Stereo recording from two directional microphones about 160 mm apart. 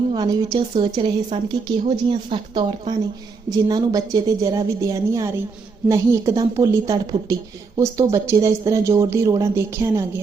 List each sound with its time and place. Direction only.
0.1 s speech: 25° right (ahead or behind)
3.5 s speech: 25° right (ahead or behind)